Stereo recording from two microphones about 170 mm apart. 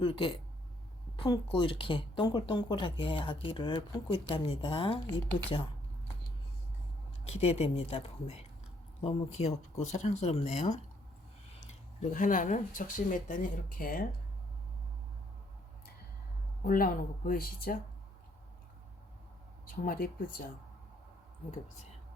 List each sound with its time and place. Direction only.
0.0 s speech: 30° left (ahead or behind)
7.3 s speech: 40° left (ahead or behind); by 14.1 s 60° left (ahead or behind)
16.6 s speech: 55° left (ahead or behind)
19.6 s speech: 60° left (ahead or behind)